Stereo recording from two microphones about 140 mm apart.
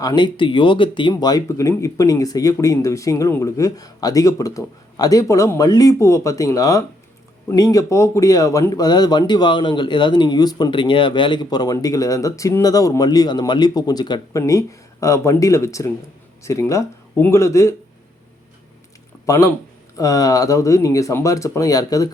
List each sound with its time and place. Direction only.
0.0 s speech: 30° left (ahead or behind)
19.2 s speech: 20° left (ahead or behind)